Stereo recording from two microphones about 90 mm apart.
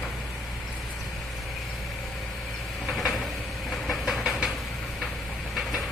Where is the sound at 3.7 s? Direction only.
Centre (ahead or behind).